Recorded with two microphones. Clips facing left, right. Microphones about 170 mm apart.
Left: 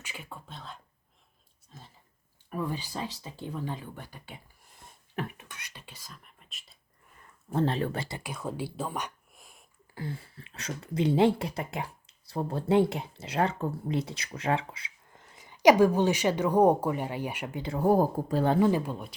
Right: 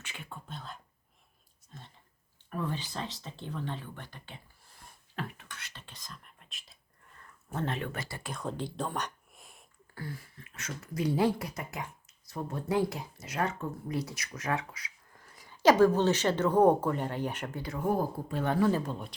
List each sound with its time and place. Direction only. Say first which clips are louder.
0.0 s speech: left 2 dB; 5° left (ahead or behind)
1.7 s chewing: even; centre (ahead or behind)
2.5 s speech: left 2 dB; 10° left (ahead or behind)
7.5 s speech: left 6 dB; 30° left (ahead or behind)
8.3 s speech: right 1 dB; 5° left (ahead or behind)
9.9 s speech: left 4 dB; 25° left (ahead or behind)
17.6 s speech: left 7 dB; 30° left (ahead or behind)
18.6 s speech: left 3 dB; 10° left (ahead or behind)